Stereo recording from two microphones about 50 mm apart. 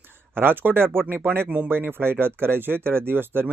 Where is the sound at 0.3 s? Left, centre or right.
Right.